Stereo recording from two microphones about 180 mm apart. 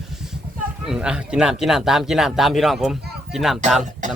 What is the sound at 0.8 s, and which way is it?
Speech, 5° right (ahead or behind).